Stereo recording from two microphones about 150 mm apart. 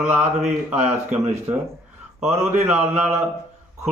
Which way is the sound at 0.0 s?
50° right (ahead or behind).